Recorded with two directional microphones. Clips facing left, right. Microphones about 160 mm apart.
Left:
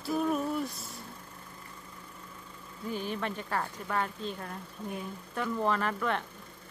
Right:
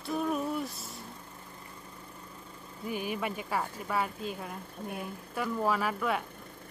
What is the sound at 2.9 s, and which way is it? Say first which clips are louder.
Speech: even; 10° right (ahead or behind).